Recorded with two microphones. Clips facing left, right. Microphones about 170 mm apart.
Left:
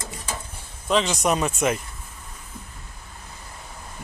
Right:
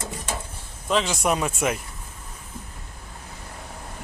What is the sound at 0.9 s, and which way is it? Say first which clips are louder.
Speech: left 1 dB; 5° right (ahead or behind).